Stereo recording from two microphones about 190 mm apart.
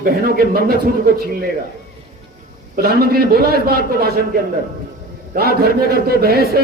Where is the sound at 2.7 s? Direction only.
55° right (ahead or behind).